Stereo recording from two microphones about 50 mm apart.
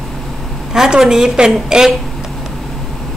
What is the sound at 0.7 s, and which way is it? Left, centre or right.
A woman's voice, centre.